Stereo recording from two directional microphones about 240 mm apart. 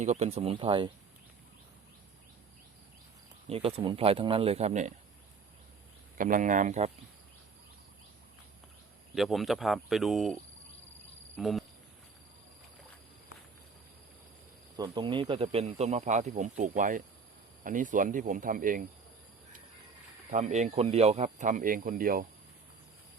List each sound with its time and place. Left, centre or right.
0.0 s speech: right
3.5 s speech: right
6.1 s speech: right
9.1 s speech: centre
11.3 s speech: centre
14.8 s speech: centre; by 18.9 s right
20.3 s speech: right